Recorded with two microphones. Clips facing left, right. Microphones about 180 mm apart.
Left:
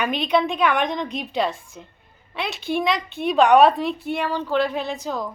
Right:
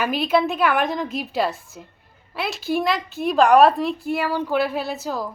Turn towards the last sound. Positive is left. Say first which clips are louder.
# even
turn(degrees=-5)  # may be behind; listen again after turning